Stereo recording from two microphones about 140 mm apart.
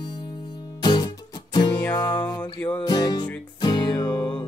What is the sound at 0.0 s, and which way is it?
Music, 30° left (ahead or behind).